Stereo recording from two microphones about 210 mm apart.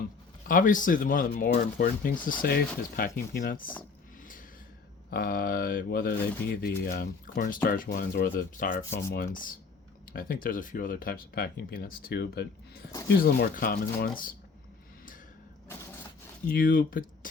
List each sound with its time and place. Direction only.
0.4 s speech: 40° left (ahead or behind)
5.1 s speech: 45° left (ahead or behind)
16.6 s speech: 40° left (ahead or behind)